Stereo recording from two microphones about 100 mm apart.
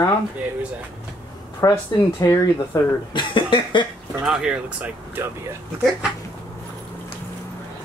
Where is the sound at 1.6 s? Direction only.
30° left (ahead or behind).